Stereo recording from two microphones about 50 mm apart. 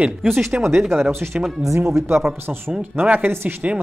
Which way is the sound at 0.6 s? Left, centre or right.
Right.